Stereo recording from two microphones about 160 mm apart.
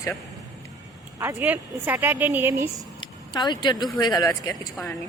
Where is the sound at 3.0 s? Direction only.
25° left (ahead or behind).